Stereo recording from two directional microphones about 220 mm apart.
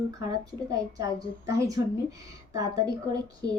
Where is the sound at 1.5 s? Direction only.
15° right (ahead or behind).